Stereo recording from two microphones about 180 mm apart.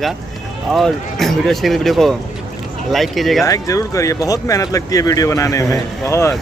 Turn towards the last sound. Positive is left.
turn(degrees=15)  # may be behind; listen again after turning